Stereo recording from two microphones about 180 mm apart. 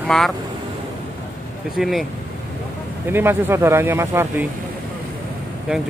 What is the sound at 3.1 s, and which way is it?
Speech, 10° right (ahead or behind).